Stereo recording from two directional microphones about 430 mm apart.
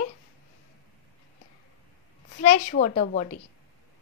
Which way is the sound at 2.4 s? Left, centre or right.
Centre.